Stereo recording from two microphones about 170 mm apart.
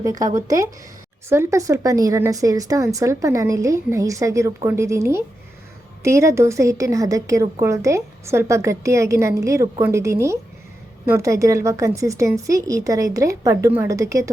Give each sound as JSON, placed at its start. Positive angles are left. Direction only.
{"t": 0.0, "sound": "a woman's voice", "side_deg": -20}